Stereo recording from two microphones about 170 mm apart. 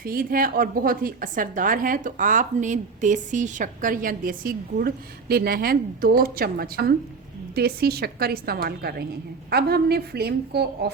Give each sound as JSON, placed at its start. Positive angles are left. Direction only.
{"t": 0.0, "sound": "a woman's voice", "side_deg": -60}